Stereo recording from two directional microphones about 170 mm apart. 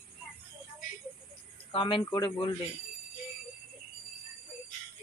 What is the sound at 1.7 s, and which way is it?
Speech, 30° left (ahead or behind).